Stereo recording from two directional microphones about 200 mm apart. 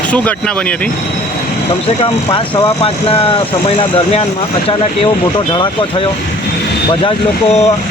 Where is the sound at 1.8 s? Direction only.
25° left (ahead or behind).